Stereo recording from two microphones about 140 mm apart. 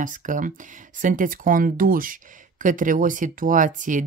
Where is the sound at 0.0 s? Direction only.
65° right (ahead or behind).